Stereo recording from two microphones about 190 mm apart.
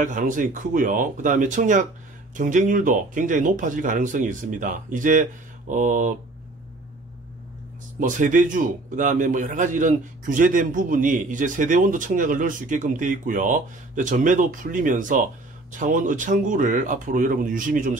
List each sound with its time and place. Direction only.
0.0 s a man's voice: 45° right (ahead or behind)
8.0 s a man's voice: 45° right (ahead or behind)